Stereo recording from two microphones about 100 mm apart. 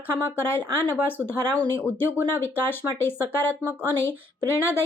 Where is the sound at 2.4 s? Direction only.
20° left (ahead or behind).